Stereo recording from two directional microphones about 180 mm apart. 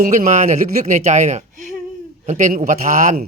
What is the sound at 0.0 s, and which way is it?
Speech, 45° right (ahead or behind).